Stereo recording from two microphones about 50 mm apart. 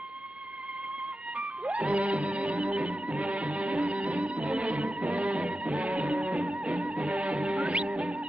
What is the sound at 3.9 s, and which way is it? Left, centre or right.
Music, centre.